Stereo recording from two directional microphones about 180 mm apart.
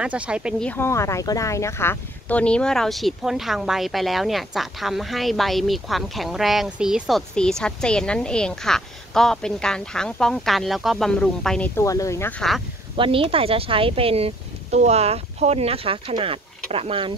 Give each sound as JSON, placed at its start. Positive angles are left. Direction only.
{"t": 0.0, "sound": "speech", "side_deg": -5}
{"t": 0.7, "sound": "speech", "side_deg": 15}
{"t": 12.9, "sound": "speech", "side_deg": -30}